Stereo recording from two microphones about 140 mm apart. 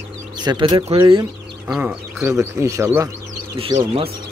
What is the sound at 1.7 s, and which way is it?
Speech, 5° right (ahead or behind).